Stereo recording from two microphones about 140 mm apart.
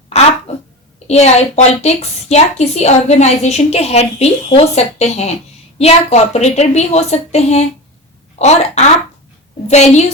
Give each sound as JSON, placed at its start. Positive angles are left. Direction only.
{"t": 1.0, "sound": "a woman's voice", "side_deg": 50}